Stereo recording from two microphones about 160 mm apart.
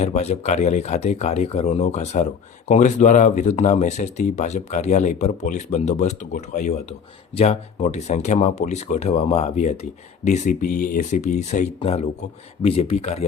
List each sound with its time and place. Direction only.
0.0 s speech: 45° left (ahead or behind); by 11.2 s 60° left (ahead or behind)
11.2 s speech: 50° left (ahead or behind)
11.8 s speech: 40° left (ahead or behind)